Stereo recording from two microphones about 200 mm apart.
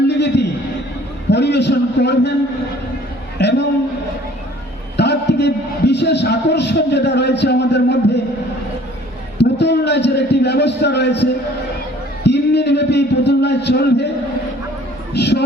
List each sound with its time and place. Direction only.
0.1 s a sound: 60° left (ahead or behind)
1.3 s a man's voice: 60° left (ahead or behind)
3.3 s a sound: 60° left (ahead or behind)
4.9 s a man's voice: 60° left (ahead or behind)
9.4 s a man's voice: 60° left (ahead or behind)
15.1 s speech: 55° left (ahead or behind)